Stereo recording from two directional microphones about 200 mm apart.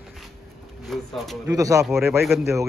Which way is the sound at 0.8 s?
Centre (ahead or behind).